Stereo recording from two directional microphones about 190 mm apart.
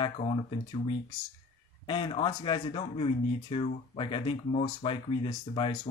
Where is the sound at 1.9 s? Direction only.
25° left (ahead or behind).